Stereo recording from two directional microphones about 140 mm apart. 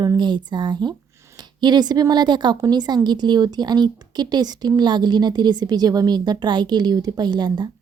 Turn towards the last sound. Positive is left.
turn(degrees=-30)  # may be behind; listen again after turning